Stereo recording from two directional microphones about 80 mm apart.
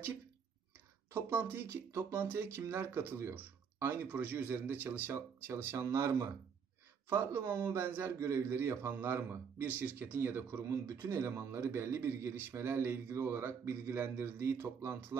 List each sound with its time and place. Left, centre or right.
1.1 s speech: right